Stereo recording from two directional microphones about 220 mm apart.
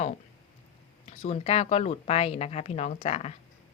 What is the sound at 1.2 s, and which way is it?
A woman's voice, 30° left (ahead or behind).